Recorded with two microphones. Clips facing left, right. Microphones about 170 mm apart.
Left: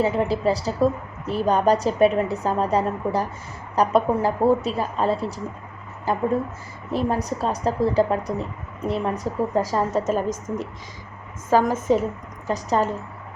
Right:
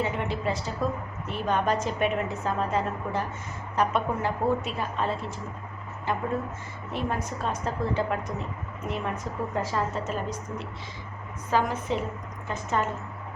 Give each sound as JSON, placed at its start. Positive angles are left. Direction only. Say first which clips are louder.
{"t": 0.0, "sound": "a woman's voice", "louder": "left 8 dB", "side_deg": 35}